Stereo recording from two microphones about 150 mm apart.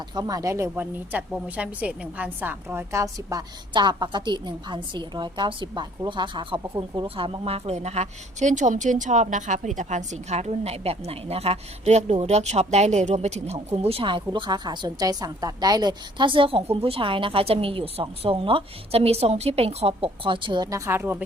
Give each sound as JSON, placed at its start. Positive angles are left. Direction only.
{"t": 0.1, "sound": "a woman's voice", "side_deg": -25}